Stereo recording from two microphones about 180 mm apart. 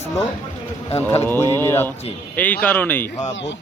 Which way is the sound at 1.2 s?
15° left (ahead or behind).